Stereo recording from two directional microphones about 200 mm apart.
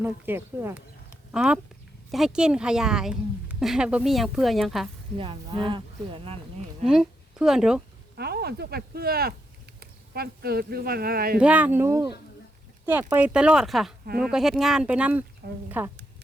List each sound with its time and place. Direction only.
0.0 s a woman's voice: 10° right (ahead or behind)
5.1 s speech: 25° right (ahead or behind)
6.8 s a woman's voice: centre (ahead or behind)
8.1 s speech: 55° right (ahead or behind)
11.3 s a woman's voice: 5° right (ahead or behind)
15.4 s speech: 45° right (ahead or behind)